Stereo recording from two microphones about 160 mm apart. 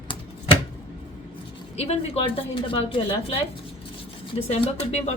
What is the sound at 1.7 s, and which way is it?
A woman's voice, 40° left (ahead or behind).